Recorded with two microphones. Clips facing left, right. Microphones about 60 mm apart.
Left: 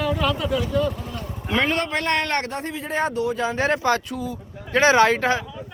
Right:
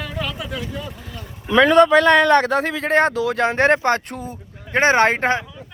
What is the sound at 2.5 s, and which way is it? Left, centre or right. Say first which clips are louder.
Speech: right 8 dB; right.